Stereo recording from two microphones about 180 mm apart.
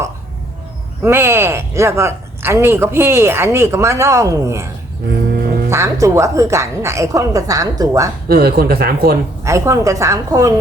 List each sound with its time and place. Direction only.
1.0 s speech: 15° right (ahead or behind)
5.7 s speech: 15° right (ahead or behind)
8.3 s speech: 60° right (ahead or behind)
9.4 s speech: 15° right (ahead or behind)